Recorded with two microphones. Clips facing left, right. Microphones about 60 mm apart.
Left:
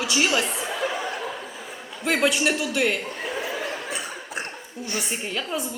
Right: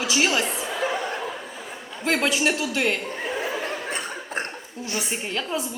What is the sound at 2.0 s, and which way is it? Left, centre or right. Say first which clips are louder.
Speech: even; centre.